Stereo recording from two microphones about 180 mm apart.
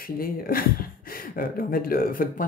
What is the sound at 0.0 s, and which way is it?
Speech, 55° left (ahead or behind).